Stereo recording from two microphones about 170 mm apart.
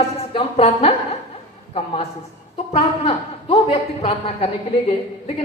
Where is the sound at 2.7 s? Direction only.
40° left (ahead or behind).